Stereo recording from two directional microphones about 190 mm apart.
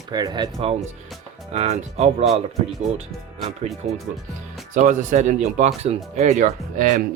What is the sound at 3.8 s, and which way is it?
Speech, 40° right (ahead or behind).